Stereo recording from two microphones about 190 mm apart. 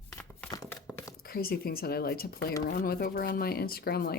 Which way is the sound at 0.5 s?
20° left (ahead or behind).